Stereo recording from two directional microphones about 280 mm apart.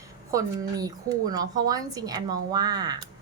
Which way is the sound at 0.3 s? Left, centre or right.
Centre.